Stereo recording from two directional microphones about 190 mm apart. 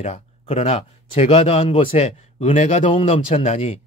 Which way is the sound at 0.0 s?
35° left (ahead or behind).